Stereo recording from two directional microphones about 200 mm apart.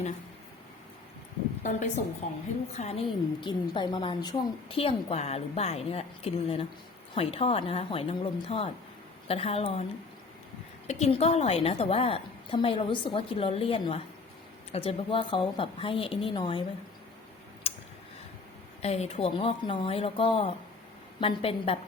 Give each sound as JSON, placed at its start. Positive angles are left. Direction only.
{"t": 2.2, "sound": "a woman's voice", "side_deg": 35}
{"t": 10.8, "sound": "a woman's voice", "side_deg": 35}
{"t": 17.7, "sound": "a sound", "side_deg": 30}
{"t": 18.8, "sound": "a woman's voice", "side_deg": 30}